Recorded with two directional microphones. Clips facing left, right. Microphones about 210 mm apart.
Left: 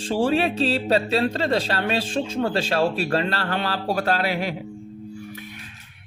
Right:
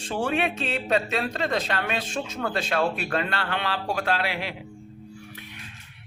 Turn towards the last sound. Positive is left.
turn(degrees=40)  # may be behind; listen again after turning